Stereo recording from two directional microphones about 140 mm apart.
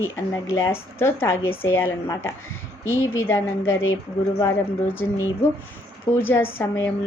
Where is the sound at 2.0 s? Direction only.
25° left (ahead or behind).